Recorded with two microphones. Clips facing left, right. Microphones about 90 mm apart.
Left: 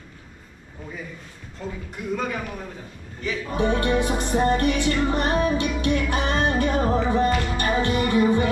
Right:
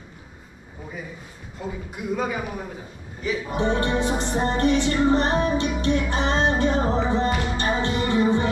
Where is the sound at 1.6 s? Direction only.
10° right (ahead or behind).